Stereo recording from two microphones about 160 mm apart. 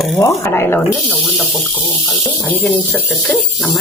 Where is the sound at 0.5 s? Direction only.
15° left (ahead or behind).